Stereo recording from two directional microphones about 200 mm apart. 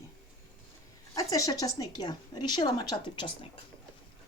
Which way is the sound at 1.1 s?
15° left (ahead or behind).